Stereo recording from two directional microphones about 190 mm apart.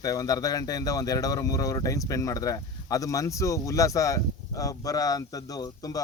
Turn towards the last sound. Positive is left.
turn(degrees=20)  # may be behind; listen again after turning